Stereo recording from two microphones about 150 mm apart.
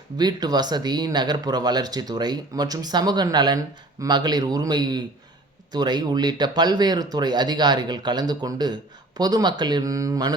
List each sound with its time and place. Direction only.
0.2 s speech: 25° right (ahead or behind)